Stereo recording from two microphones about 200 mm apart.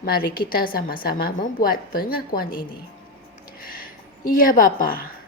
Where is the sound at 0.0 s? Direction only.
50° left (ahead or behind).